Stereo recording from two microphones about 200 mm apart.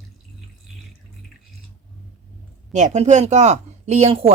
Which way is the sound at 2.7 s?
35° right (ahead or behind).